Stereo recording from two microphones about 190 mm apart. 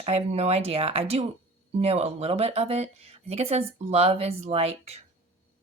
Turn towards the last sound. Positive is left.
turn(degrees=-35)  # may be behind; listen again after turning